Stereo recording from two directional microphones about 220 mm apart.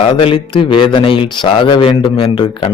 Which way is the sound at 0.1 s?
25° left (ahead or behind).